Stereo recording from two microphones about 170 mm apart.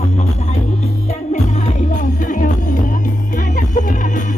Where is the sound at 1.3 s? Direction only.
45° left (ahead or behind).